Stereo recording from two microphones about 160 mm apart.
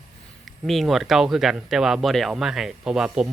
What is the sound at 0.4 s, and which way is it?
Speech, centre (ahead or behind).